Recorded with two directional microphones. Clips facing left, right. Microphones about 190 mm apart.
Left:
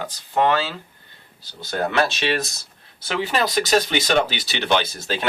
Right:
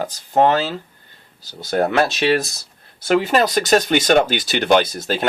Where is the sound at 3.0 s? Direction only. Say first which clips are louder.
Right 7 dB; 45° right (ahead or behind).